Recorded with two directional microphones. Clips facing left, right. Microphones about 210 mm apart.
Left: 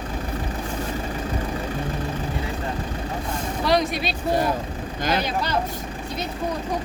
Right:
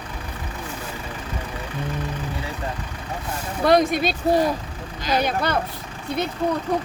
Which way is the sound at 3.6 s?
50° right (ahead or behind).